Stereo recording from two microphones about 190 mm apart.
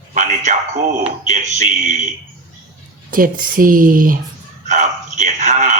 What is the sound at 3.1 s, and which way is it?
Speech, 45° right (ahead or behind).